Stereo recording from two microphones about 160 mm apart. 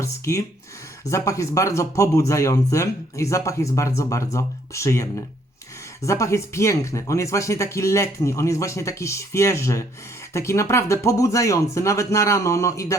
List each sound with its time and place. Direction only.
0.0 s speech: 20° left (ahead or behind)